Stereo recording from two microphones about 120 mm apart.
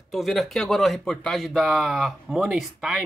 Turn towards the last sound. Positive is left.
turn(degrees=-5)  # may be behind; listen again after turning